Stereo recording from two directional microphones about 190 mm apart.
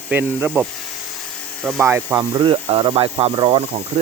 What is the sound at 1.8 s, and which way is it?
Speech, 10° right (ahead or behind).